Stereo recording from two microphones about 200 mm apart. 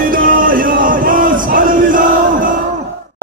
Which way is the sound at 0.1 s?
45° right (ahead or behind).